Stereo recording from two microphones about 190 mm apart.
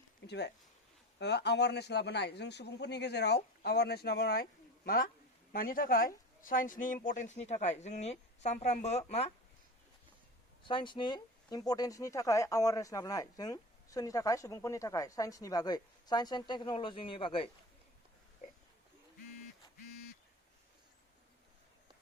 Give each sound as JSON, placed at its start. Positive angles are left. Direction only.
{"t": 0.3, "sound": "a man's voice", "side_deg": 60}
{"t": 5.5, "sound": "speech", "side_deg": 50}
{"t": 10.6, "sound": "speech", "side_deg": 25}